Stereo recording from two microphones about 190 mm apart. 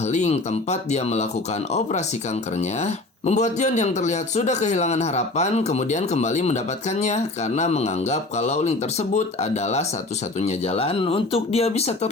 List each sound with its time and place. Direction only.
0.1 s speech: 35° left (ahead or behind)
2.6 s speech: 35° left (ahead or behind)